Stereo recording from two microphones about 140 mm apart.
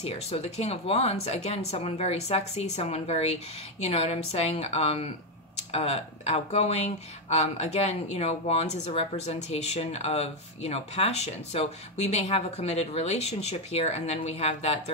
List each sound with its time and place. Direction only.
0.0 s speech: 50° left (ahead or behind)